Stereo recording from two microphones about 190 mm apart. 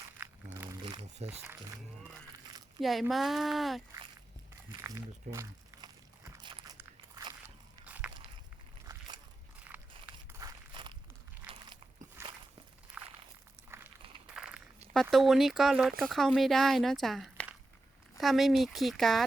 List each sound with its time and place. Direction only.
0.2 s crumpling: 10° right (ahead or behind)
1.3 s speech: 10° right (ahead or behind)
2.8 s speech: centre (ahead or behind)
4.8 s walk: 15° right (ahead or behind)
7.9 s walk: 10° right (ahead or behind)
8.9 s biting: 20° right (ahead or behind)
10.3 s a sound: 20° right (ahead or behind)
12.2 s walk: 15° right (ahead or behind)
13.0 s a sound: 10° right (ahead or behind)
14.3 s a sound: 5° right (ahead or behind)
15.1 s speech: centre (ahead or behind)